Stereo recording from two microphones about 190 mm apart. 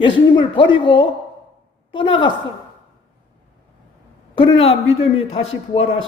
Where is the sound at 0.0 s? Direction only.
25° left (ahead or behind).